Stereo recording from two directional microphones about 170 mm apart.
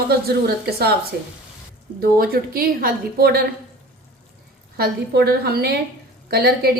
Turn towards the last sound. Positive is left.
turn(degrees=-65)  # may be behind; listen again after turning